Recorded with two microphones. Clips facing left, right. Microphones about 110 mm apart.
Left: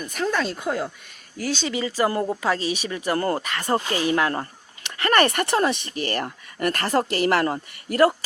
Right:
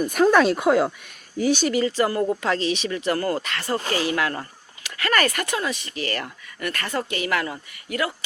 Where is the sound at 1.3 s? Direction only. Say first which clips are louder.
Right 6 dB; 15° right (ahead or behind).